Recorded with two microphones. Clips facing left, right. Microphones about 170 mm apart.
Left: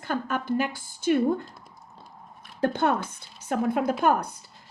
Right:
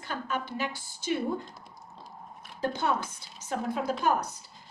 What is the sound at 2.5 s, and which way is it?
A woman's voice, 55° left (ahead or behind).